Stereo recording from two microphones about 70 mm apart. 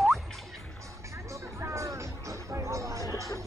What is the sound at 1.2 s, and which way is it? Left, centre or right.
Music, right.